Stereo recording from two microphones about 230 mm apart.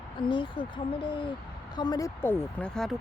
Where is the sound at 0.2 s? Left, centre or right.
Left.